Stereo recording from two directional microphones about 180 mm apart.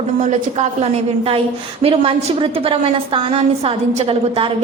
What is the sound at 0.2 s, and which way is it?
A woman's voice, 40° right (ahead or behind).